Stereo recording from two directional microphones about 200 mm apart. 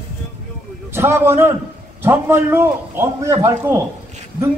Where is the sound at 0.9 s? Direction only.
10° right (ahead or behind).